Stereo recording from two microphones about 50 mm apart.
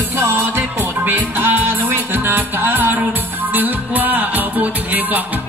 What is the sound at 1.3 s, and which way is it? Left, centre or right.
Music, right.